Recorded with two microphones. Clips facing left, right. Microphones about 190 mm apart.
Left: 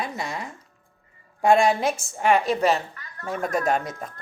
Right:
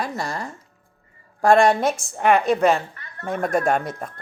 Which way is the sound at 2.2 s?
50° right (ahead or behind).